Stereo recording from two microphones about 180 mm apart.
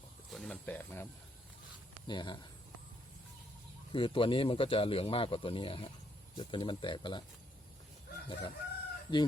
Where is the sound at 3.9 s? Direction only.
30° left (ahead or behind).